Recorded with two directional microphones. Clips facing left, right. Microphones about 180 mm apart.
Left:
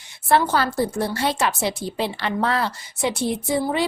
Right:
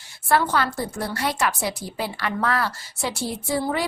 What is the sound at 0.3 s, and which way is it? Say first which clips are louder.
A woman's voice: left 2 dB; 25° left (ahead or behind).